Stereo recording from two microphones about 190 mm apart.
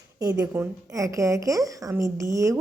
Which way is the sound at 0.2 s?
20° right (ahead or behind).